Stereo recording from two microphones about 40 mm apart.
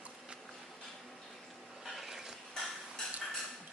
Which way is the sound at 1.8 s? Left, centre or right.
Centre.